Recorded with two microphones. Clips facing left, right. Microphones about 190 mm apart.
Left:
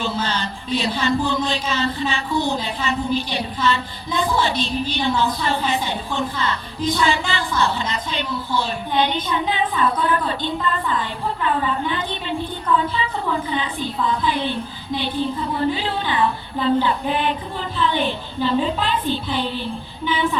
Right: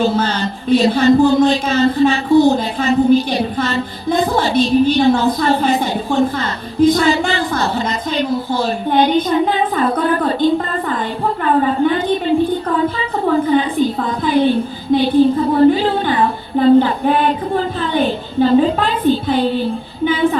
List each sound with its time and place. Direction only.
0.0 s speech: 40° right (ahead or behind)
7.1 s speech: 40° right (ahead or behind)
13.2 s speech: 45° right (ahead or behind)
14.9 s child singing: 40° right (ahead or behind)
17.5 s speech: 45° right (ahead or behind)
18.4 s child singing: 40° right (ahead or behind)